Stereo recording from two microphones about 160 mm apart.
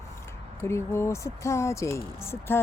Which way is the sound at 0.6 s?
15° left (ahead or behind).